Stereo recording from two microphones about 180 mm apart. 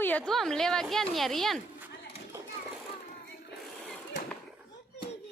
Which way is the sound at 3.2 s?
65° left (ahead or behind).